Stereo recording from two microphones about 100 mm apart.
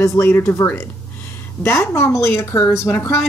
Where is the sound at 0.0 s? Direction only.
25° left (ahead or behind).